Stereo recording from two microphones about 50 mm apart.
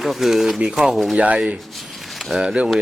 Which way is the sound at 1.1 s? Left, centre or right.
Right.